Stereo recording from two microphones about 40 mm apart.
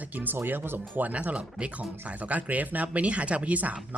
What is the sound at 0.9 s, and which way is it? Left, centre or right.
Speech, right.